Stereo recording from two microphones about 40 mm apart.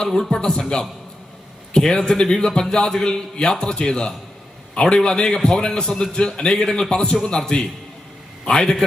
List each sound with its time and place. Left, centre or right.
0.0 s speech: centre
1.7 s a man's voice: left